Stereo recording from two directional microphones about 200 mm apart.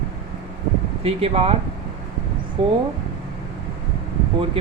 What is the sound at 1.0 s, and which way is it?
Speech, 30° right (ahead or behind).